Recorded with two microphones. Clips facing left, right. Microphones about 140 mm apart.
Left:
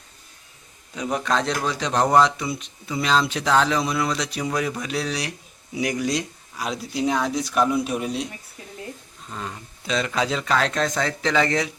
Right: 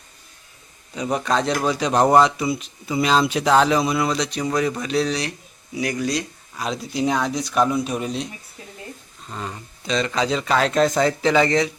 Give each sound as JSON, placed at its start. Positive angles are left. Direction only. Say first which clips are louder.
{"t": 0.9, "sound": "a man's voice", "louder": "right 2 dB", "side_deg": 0}
{"t": 5.7, "sound": "speech", "louder": "even", "side_deg": 20}
{"t": 6.6, "sound": "a man's voice", "louder": "right 2 dB", "side_deg": 5}
{"t": 9.3, "sound": "a man's voice", "louder": "right 2 dB", "side_deg": 0}